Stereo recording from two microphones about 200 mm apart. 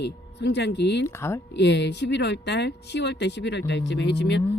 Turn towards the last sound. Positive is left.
turn(degrees=60)  # may be behind; listen again after turning